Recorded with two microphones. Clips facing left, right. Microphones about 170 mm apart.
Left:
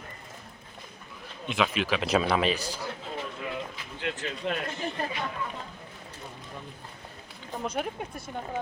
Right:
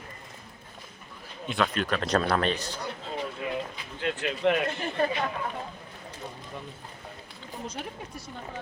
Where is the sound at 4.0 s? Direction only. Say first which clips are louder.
Right 6 dB; 60° right (ahead or behind).